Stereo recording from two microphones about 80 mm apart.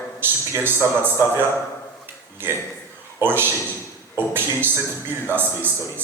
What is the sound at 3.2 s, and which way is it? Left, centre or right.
A man's voice, right.